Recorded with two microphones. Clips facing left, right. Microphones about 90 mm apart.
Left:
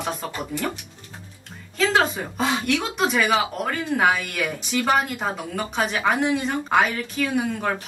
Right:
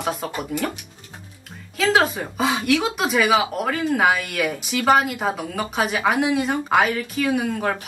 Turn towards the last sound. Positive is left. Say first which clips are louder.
# right 2 dB
turn(degrees=0)  # may be behind; listen again after turning